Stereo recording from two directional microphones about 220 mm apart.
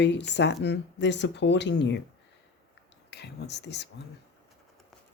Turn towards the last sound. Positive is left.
turn(degrees=50)  # may be behind; listen again after turning